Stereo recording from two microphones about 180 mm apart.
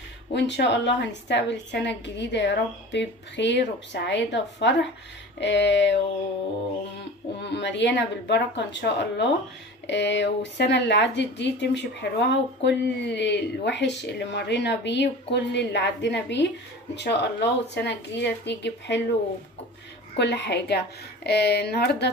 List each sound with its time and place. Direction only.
0.3 s a woman's voice: 75° left (ahead or behind)
5.4 s a sound: 75° left (ahead or behind)
7.4 s a woman's voice: 75° left (ahead or behind)
20.2 s a woman's voice: 70° left (ahead or behind)